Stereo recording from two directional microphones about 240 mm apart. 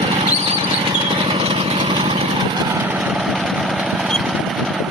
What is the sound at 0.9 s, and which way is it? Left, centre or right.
Vehicle, right.